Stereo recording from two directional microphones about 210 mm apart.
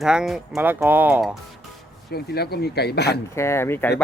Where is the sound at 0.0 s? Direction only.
5° right (ahead or behind).